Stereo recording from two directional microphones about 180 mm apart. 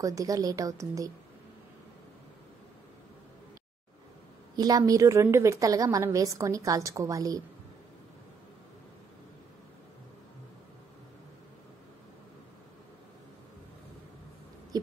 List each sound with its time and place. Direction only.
0.0 s a woman's voice: 20° right (ahead or behind)
4.6 s a woman's voice: 20° right (ahead or behind)